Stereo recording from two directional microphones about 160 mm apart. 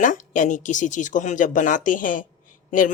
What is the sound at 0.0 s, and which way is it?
Speech, 50° left (ahead or behind).